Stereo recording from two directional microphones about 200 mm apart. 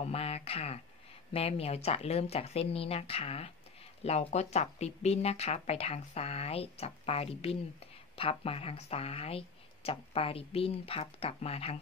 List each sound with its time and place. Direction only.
0.0 s speech: 30° left (ahead or behind)